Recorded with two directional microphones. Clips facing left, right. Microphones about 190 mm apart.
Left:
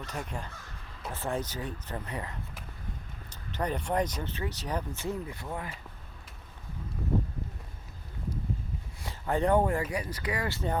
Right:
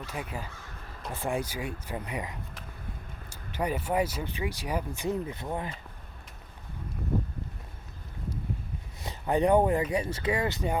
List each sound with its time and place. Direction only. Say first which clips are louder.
0.0 s speech: right 1 dB; 5° right (ahead or behind); by 5.7 s 20° right (ahead or behind)
9.0 s speech: right 3 dB; 20° right (ahead or behind)